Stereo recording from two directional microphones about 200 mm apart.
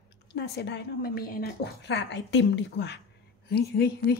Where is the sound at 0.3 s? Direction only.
60° left (ahead or behind).